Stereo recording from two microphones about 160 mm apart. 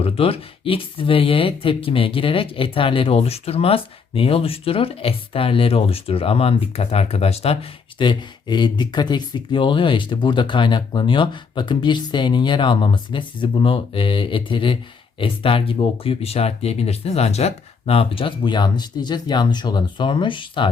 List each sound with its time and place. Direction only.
0.0 s speech: 35° left (ahead or behind)